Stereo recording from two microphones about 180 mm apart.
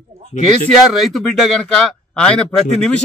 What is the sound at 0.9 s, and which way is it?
A man's voice, centre (ahead or behind).